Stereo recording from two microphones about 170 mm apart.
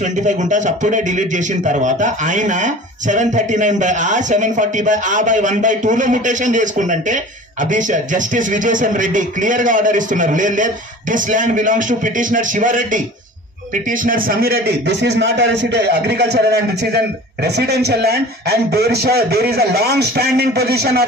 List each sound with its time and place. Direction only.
0.0 s a man's voice: 45° right (ahead or behind); by 21.0 s 70° right (ahead or behind)